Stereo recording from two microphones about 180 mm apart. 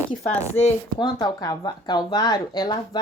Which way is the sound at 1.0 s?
20° left (ahead or behind).